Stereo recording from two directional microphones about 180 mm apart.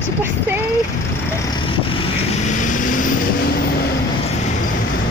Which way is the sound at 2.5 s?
45° left (ahead or behind).